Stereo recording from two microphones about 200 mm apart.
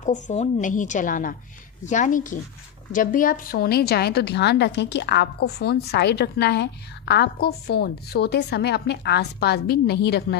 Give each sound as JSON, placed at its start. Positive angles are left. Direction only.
{"t": 0.0, "sound": "a woman's voice", "side_deg": 35}